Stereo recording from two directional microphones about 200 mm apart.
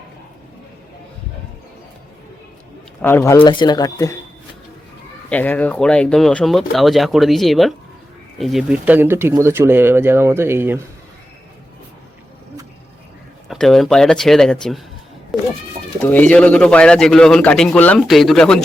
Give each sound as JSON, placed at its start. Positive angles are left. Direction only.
{"t": 3.0, "sound": "speech", "side_deg": 10}
{"t": 3.4, "sound": "speech", "side_deg": 20}
{"t": 5.3, "sound": "a man's voice", "side_deg": 10}
{"t": 13.5, "sound": "a man's voice", "side_deg": 0}
{"t": 15.3, "sound": "cat", "side_deg": 0}
{"t": 16.0, "sound": "a man's voice", "side_deg": 10}